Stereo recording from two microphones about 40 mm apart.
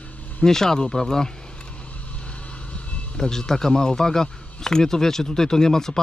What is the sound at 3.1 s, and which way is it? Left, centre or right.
Speech, centre.